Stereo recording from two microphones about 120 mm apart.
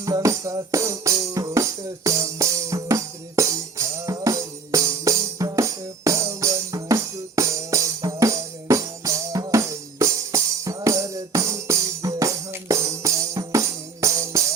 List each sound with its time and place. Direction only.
0.0 s music: 25° right (ahead or behind)